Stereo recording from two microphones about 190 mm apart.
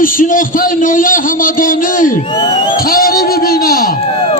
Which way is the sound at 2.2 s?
25° left (ahead or behind).